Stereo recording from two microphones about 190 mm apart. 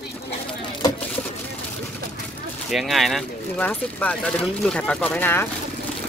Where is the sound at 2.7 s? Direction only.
Centre (ahead or behind).